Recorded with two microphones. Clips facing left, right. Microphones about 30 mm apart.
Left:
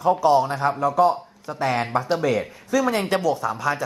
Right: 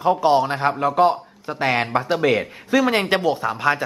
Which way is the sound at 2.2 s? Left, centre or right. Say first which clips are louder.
Right 3 dB; right.